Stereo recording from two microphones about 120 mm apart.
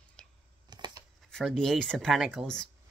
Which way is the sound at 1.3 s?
5° left (ahead or behind).